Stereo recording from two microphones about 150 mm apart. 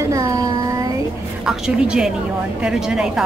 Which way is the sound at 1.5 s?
5° right (ahead or behind).